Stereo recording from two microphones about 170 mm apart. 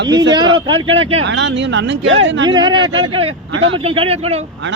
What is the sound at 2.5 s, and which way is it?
Speech, 25° right (ahead or behind).